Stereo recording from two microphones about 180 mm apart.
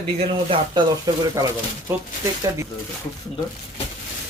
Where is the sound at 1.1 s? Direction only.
20° right (ahead or behind).